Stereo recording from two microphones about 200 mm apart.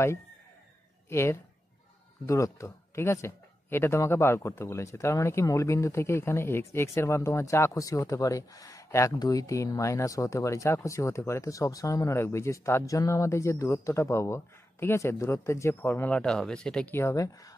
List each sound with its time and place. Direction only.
1.0 s speech: 15° left (ahead or behind)